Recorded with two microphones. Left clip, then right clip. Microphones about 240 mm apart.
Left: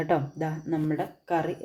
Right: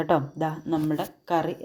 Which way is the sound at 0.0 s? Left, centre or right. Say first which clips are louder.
Right 3 dB; centre.